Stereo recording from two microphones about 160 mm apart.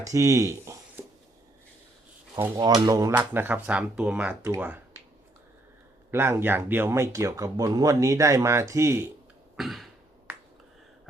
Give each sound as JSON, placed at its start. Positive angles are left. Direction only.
{"t": 0.0, "sound": "speech", "side_deg": -20}
{"t": 1.0, "sound": "a sound", "side_deg": -10}
{"t": 2.3, "sound": "speech", "side_deg": -20}
{"t": 6.1, "sound": "speech", "side_deg": -15}
{"t": 9.6, "sound": "throat clearing", "side_deg": 0}